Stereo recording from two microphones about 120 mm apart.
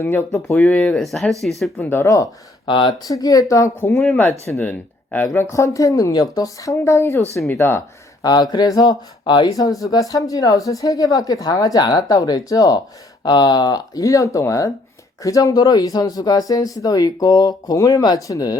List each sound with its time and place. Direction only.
0.0 s speech: 20° left (ahead or behind)
0.5 s speech: 10° left (ahead or behind)
1.9 s speech: 25° left (ahead or behind)
2.6 s speech: 40° left (ahead or behind); by 7.8 s 20° left (ahead or behind)
8.2 s speech: 35° left (ahead or behind)